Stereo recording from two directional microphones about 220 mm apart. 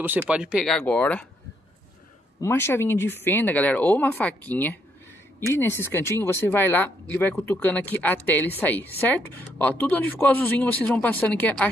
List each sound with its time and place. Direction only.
0.0 s speech: 5° right (ahead or behind)
2.4 s speech: 10° left (ahead or behind)